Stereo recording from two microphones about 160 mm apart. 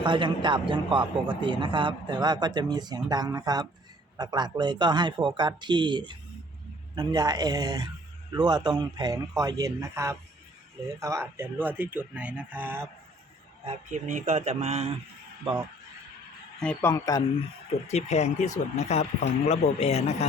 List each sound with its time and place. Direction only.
0.0 s a man's voice: 30° right (ahead or behind); by 12.9 s 15° right (ahead or behind)
13.7 s speech: 50° right (ahead or behind)
16.6 s a man's voice: 5° left (ahead or behind)
16.9 s speech: 20° left (ahead or behind)
17.9 s speech: 45° left (ahead or behind)